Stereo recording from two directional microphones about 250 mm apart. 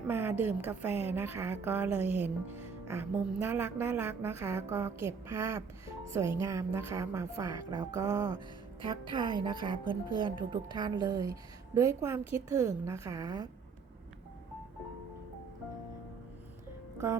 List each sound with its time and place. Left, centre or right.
0.1 s a woman's voice: centre